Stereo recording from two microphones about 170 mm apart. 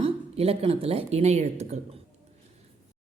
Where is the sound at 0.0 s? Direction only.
35° right (ahead or behind).